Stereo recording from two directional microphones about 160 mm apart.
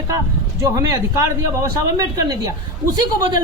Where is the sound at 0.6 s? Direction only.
20° right (ahead or behind).